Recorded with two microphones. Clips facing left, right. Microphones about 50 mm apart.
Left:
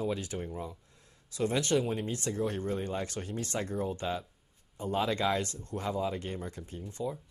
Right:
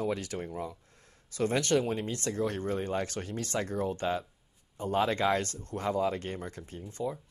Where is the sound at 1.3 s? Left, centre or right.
Right.